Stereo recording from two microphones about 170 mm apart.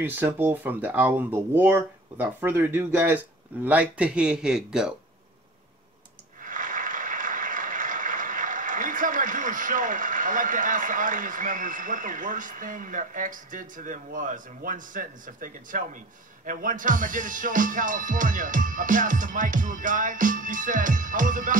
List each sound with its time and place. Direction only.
0.0 s speech: 10° right (ahead or behind)
6.4 s a sound: 50° right (ahead or behind)
16.4 s music: 50° right (ahead or behind)